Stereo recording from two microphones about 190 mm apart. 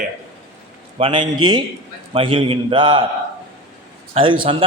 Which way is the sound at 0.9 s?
25° right (ahead or behind).